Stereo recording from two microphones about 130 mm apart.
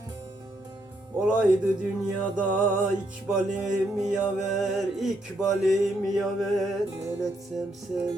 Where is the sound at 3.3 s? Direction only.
5° right (ahead or behind).